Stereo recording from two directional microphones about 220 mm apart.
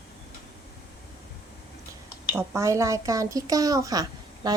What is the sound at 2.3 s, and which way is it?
A woman's voice, 10° right (ahead or behind).